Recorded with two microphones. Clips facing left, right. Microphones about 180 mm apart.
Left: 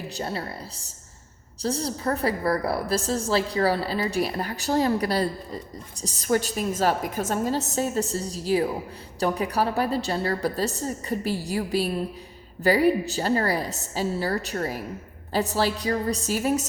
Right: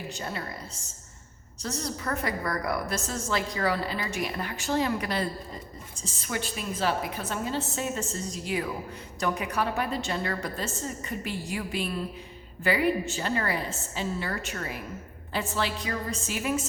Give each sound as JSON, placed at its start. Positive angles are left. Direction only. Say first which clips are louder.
{"t": 0.2, "sound": "a woman's voice", "louder": "left 8 dB", "side_deg": 35}